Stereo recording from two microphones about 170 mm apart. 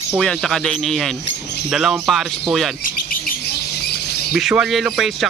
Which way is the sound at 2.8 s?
55° left (ahead or behind).